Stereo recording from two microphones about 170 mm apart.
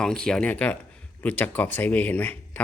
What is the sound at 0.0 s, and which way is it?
Speech, 5° left (ahead or behind).